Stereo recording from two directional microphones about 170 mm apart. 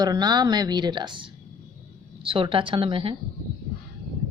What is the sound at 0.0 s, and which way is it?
Speech, 25° right (ahead or behind).